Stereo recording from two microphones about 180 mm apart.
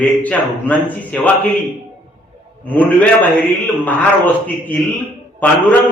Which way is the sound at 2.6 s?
10° left (ahead or behind).